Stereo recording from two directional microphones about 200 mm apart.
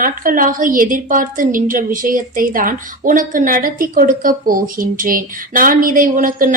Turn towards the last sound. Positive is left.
turn(degrees=-40)  # may be behind; listen again after turning